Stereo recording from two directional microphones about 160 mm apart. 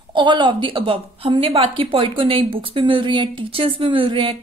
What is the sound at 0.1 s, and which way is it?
A woman's voice, 30° right (ahead or behind).